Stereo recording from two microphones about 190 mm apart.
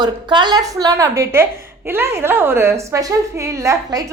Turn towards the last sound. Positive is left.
turn(degrees=-15)  # may be behind; listen again after turning